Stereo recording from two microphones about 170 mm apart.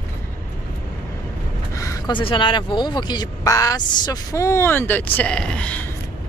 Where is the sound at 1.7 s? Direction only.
20° left (ahead or behind).